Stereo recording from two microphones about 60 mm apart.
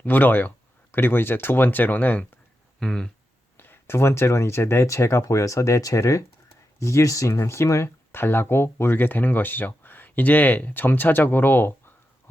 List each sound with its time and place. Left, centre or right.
0.0 s speech: left
2.8 s speech: centre
3.6 s speech: left
8.1 s speech: left